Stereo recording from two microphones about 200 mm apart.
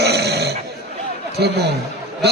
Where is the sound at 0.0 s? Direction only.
55° right (ahead or behind).